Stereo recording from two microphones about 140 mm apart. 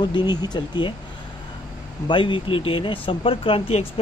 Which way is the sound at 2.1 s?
35° left (ahead or behind).